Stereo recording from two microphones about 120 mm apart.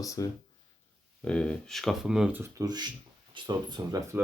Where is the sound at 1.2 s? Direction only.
10° left (ahead or behind).